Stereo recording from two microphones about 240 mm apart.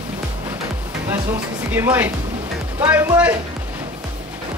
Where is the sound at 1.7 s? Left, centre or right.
Centre.